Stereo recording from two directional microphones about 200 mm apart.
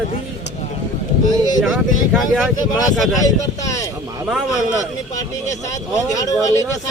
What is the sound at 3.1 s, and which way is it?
Speech, 15° left (ahead or behind).